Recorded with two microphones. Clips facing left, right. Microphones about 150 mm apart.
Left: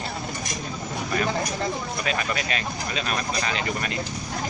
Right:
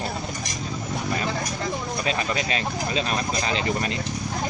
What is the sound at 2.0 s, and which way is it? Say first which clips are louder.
Speech: right 1 dB; 30° right (ahead or behind).